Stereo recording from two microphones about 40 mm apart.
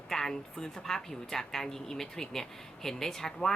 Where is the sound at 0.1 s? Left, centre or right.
Centre.